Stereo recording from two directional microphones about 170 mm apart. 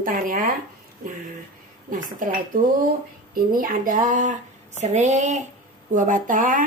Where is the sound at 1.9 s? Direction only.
50° right (ahead or behind).